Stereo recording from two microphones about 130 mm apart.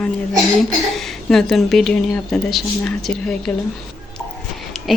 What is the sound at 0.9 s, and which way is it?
A woman's voice, centre (ahead or behind).